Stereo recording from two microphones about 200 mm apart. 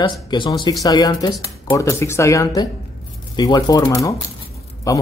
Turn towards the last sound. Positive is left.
turn(degrees=15)  # may be behind; listen again after turning